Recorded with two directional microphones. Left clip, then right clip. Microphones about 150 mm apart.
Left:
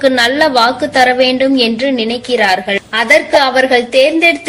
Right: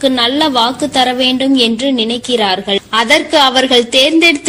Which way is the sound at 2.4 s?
40° right (ahead or behind).